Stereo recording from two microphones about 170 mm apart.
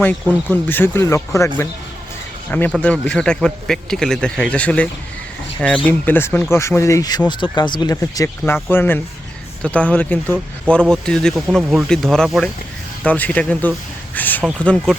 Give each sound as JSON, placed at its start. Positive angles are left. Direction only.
{"t": 0.5, "sound": "speech", "side_deg": 10}
{"t": 2.5, "sound": "a man's voice", "side_deg": 10}